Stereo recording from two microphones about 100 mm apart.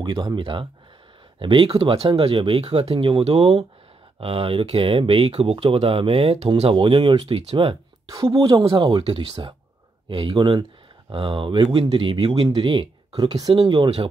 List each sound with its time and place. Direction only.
0.0 s speech: 45° right (ahead or behind)
0.4 s speech: 55° right (ahead or behind); by 7.7 s 75° right (ahead or behind)
8.1 s speech: 35° right (ahead or behind)
9.1 s speech: 55° right (ahead or behind)
13.1 s speech: 45° right (ahead or behind); by 14.0 s 65° right (ahead or behind)